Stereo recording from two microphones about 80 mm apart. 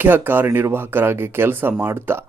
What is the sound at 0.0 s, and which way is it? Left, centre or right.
Speech, right.